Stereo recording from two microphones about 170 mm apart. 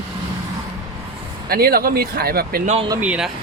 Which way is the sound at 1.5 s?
65° right (ahead or behind).